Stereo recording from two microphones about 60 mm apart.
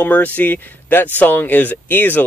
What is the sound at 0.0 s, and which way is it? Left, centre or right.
Speech, left.